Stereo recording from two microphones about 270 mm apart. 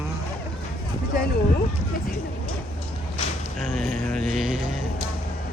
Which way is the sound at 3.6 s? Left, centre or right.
Centre.